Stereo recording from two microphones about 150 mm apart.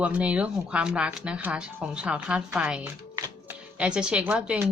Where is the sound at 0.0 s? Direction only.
10° right (ahead or behind).